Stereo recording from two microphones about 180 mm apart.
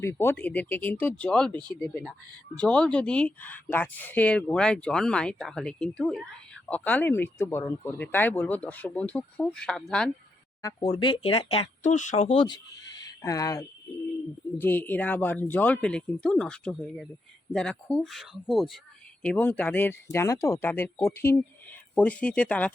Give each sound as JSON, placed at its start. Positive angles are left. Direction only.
{"t": 0.0, "sound": "speech", "side_deg": 15}
{"t": 10.6, "sound": "speech", "side_deg": 20}
{"t": 10.8, "sound": "speech", "side_deg": 30}
{"t": 13.2, "sound": "speech", "side_deg": 20}